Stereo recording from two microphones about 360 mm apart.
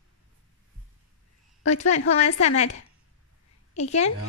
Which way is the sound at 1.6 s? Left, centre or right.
Centre.